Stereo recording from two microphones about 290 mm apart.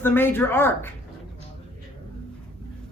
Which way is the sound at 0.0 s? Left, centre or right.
Centre.